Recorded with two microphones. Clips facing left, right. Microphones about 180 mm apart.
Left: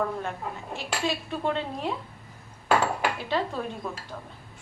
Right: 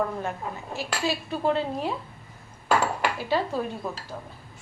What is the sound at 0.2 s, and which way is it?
Speech, 5° right (ahead or behind).